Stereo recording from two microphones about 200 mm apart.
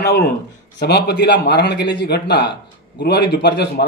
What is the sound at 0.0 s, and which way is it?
Speech, 50° left (ahead or behind).